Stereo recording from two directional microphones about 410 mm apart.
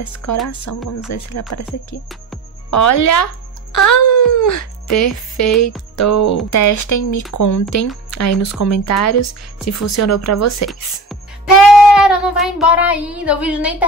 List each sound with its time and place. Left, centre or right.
0.0 s speech: left
2.7 s speech: left
11.6 s speech: centre